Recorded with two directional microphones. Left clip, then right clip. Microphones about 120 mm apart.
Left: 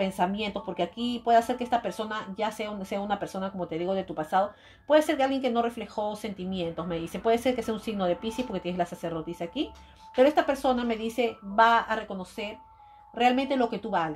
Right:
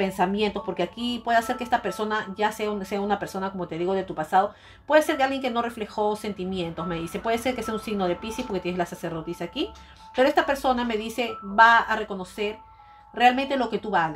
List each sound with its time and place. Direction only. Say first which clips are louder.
0.0 s speech: right 4 dB; 40° left (ahead or behind)